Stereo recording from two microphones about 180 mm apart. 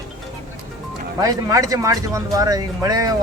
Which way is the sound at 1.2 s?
20° right (ahead or behind).